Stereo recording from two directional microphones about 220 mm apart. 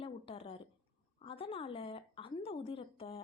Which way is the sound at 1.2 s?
25° left (ahead or behind).